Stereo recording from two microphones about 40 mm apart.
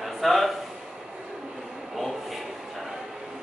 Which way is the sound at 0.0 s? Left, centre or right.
Centre.